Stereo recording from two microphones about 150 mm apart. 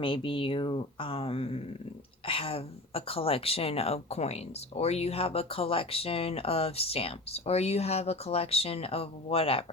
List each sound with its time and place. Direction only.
0.0 s speech: 35° left (ahead or behind)